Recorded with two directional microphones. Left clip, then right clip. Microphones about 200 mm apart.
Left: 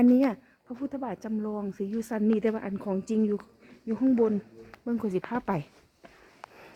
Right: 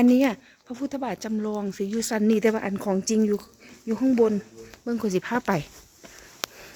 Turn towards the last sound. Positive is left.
turn(degrees=5)  # may be behind; listen again after turning